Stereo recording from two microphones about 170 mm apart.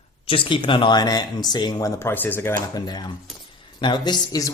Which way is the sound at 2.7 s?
25° left (ahead or behind).